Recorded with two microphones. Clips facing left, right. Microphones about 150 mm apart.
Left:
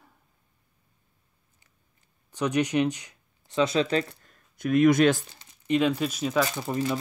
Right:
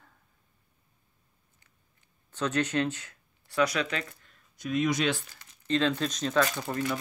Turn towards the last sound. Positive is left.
turn(degrees=10)  # may be behind; listen again after turning